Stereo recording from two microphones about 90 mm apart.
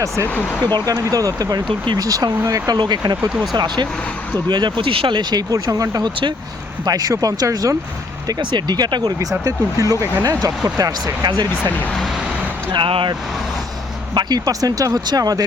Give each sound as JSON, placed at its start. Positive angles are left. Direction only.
{"t": 1.1, "sound": "speech", "side_deg": -40}
{"t": 2.7, "sound": "speech", "side_deg": -55}
{"t": 3.2, "sound": "speech", "side_deg": -10}
{"t": 3.5, "sound": "speech", "side_deg": -55}
{"t": 4.8, "sound": "speech", "side_deg": -75}
{"t": 8.3, "sound": "speech", "side_deg": -55}
{"t": 9.4, "sound": "speech", "side_deg": -35}
{"t": 12.7, "sound": "speech", "side_deg": -70}
{"t": 14.1, "sound": "speech", "side_deg": -50}